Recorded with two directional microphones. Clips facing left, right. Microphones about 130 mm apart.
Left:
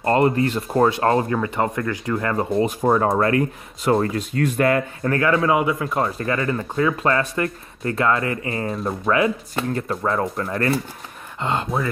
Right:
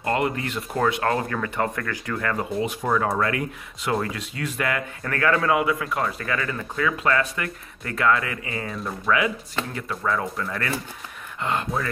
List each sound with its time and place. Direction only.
0.0 s speech: 35° left (ahead or behind)